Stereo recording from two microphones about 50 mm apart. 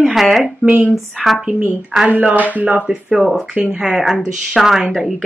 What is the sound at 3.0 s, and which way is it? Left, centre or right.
Speech, centre.